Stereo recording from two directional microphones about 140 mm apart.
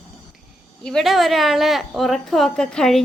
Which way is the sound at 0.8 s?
Centre (ahead or behind).